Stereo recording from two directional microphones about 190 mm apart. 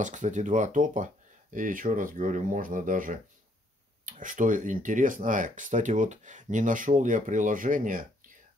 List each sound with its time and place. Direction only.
0.0 s speech: 40° right (ahead or behind)